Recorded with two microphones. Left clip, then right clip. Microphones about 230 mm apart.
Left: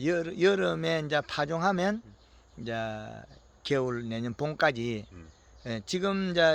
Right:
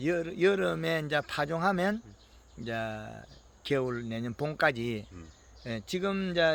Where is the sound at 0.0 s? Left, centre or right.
Centre.